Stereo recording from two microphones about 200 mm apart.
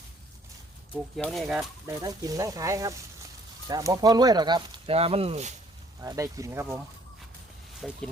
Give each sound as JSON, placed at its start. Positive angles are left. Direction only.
{"t": 1.1, "sound": "speech", "side_deg": 0}
{"t": 1.9, "sound": "speech", "side_deg": -15}
{"t": 6.0, "sound": "speech", "side_deg": -15}
{"t": 7.8, "sound": "speech", "side_deg": 0}